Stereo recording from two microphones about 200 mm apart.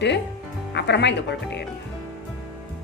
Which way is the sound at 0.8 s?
60° left (ahead or behind).